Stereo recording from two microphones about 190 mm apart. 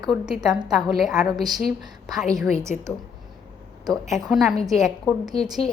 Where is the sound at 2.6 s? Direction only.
15° right (ahead or behind).